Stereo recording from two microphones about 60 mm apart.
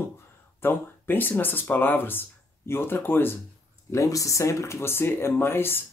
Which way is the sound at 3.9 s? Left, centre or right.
Left.